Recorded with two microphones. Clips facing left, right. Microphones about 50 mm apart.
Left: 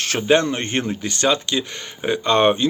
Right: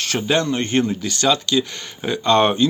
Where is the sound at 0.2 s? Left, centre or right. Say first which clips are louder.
Left 2 dB; left.